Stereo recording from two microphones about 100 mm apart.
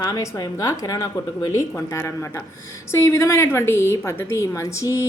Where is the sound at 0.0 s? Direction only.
35° left (ahead or behind).